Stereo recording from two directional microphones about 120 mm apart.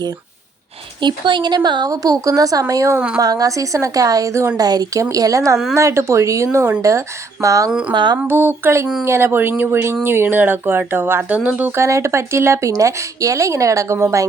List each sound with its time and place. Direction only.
1.0 s speech: 40° right (ahead or behind)
7.7 s speech: 10° right (ahead or behind)
7.9 s speech: 40° right (ahead or behind)
8.3 s speech: 20° right (ahead or behind)